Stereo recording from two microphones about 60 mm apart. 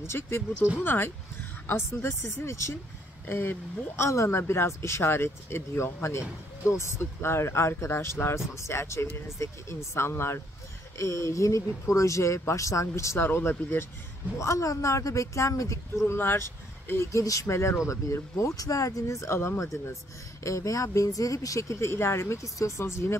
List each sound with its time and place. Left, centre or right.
0.0 s speech: left
1.8 s speech: left
3.3 s speech: left
14.4 s speech: left
16.1 s speech: left
17.1 s speech: left